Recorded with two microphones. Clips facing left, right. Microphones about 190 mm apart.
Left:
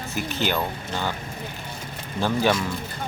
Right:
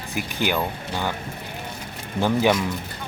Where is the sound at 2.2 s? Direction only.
15° right (ahead or behind).